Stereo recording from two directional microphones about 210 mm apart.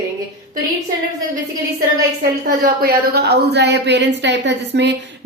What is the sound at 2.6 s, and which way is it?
A woman's voice, 45° right (ahead or behind).